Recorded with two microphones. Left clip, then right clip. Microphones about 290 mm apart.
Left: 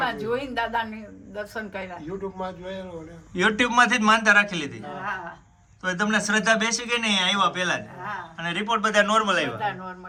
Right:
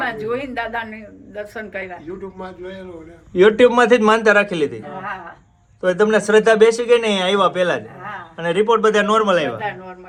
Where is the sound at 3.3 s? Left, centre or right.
Centre.